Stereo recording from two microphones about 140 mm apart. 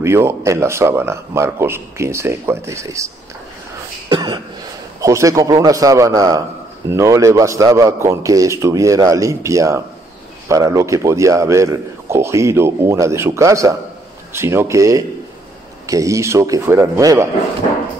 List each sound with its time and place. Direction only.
0.0 s a man's voice: 20° right (ahead or behind)
4.1 s cough: 30° right (ahead or behind)
5.0 s a man's voice: 20° right (ahead or behind)